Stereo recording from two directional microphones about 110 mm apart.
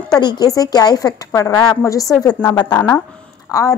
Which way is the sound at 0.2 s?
40° left (ahead or behind).